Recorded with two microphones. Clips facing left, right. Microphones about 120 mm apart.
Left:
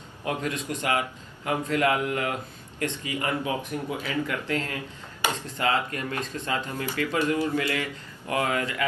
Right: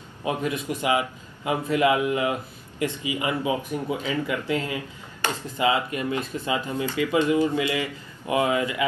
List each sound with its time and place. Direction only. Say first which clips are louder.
0.2 s a man's voice: right 3 dB; 15° right (ahead or behind)
5.2 s speech: even; 10° left (ahead or behind)
5.6 s a man's voice: right 4 dB; 15° right (ahead or behind)